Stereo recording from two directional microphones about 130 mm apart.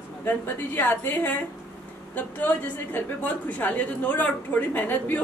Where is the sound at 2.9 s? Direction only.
15° left (ahead or behind).